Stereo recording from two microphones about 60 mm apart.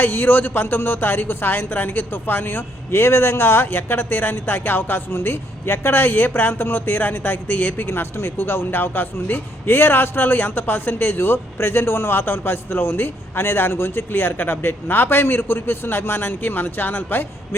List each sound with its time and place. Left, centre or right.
0.0 s speech: left